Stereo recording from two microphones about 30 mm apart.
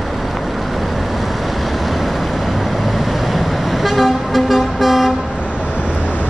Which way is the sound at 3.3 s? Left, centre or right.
Centre.